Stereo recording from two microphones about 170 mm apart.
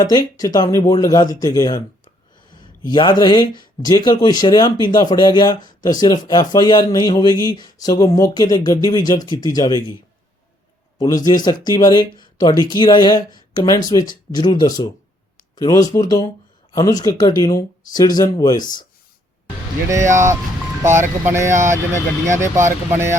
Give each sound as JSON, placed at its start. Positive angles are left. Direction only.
{"t": 0.1, "sound": "speech", "side_deg": 20}
{"t": 10.9, "sound": "a man's voice", "side_deg": 20}
{"t": 20.1, "sound": "speech", "side_deg": -15}